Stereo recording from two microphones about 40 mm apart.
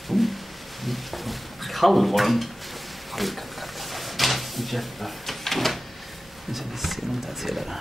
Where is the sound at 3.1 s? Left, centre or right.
Centre.